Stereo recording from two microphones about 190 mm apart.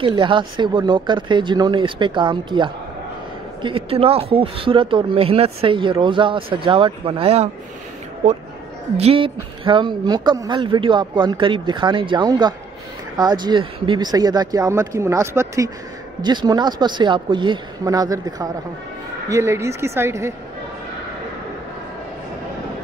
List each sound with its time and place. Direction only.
0.0 s a woman's voice: 25° right (ahead or behind)